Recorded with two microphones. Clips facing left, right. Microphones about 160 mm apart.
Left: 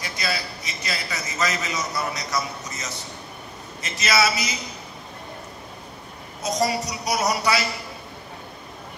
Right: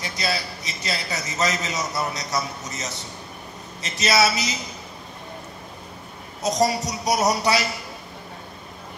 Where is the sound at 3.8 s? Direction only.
30° right (ahead or behind).